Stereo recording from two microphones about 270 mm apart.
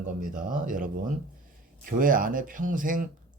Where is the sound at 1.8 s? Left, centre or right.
Right.